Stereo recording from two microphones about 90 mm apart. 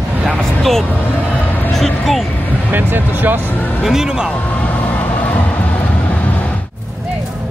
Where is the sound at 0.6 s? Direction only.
5° left (ahead or behind).